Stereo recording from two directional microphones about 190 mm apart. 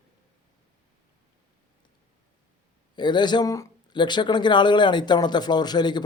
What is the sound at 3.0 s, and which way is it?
Speech, 25° left (ahead or behind).